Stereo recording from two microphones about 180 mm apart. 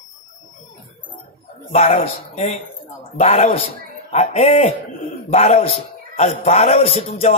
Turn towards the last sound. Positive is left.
turn(degrees=35)  # may be behind; listen again after turning